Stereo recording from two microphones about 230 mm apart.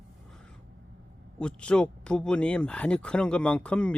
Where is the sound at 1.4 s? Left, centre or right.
Centre.